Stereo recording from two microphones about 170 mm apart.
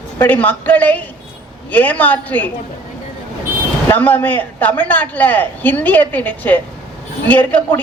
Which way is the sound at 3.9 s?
10° left (ahead or behind).